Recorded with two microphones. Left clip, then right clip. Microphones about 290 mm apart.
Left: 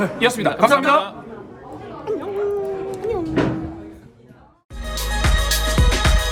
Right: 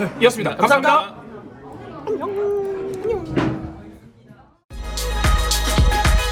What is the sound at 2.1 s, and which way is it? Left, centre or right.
Chatter, centre.